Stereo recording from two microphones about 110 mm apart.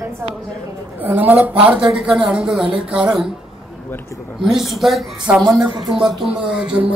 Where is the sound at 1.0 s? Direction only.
15° right (ahead or behind).